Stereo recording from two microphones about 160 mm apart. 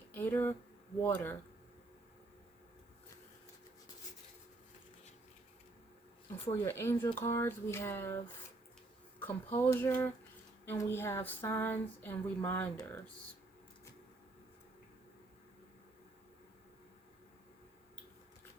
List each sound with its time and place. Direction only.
0.1 s a sound: 10° left (ahead or behind)
1.0 s speech: 10° left (ahead or behind)
6.3 s speech: 15° left (ahead or behind)